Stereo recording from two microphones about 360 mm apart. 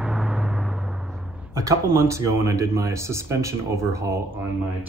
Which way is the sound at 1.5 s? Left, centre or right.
Centre.